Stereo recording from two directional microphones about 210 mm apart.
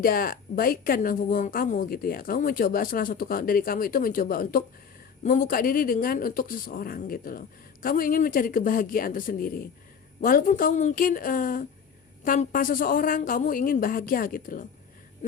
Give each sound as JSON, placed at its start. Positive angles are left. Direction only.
{"t": 0.0, "sound": "a woman's voice", "side_deg": 45}